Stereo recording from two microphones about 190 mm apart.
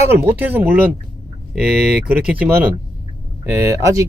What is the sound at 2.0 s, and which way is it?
Speech, 5° right (ahead or behind).